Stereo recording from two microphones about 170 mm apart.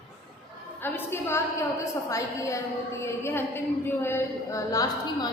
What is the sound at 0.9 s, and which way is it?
A woman's voice, 15° left (ahead or behind).